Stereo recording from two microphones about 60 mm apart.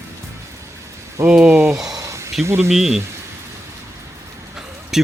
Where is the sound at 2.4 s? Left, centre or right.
Right.